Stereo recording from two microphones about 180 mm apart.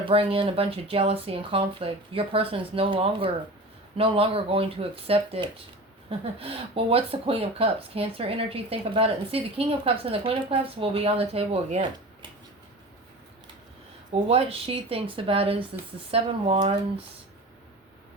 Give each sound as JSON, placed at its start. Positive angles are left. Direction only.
{"t": 0.0, "sound": "speech", "side_deg": -30}
{"t": 14.1, "sound": "speech", "side_deg": -35}